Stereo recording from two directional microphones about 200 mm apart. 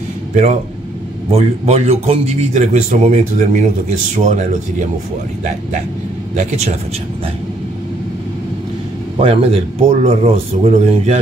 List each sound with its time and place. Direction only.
1.3 s a man's voice: 30° right (ahead or behind)
6.3 s a man's voice: 35° right (ahead or behind)
9.1 s speech: 30° right (ahead or behind)